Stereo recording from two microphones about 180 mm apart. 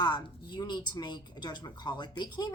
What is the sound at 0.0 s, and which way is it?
A woman's voice, 25° left (ahead or behind).